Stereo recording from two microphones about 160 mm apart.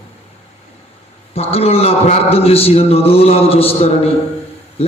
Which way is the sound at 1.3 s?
40° left (ahead or behind).